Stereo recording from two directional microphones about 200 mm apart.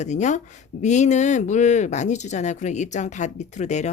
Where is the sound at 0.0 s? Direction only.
35° left (ahead or behind).